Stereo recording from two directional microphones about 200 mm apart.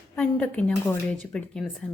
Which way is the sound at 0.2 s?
5° left (ahead or behind).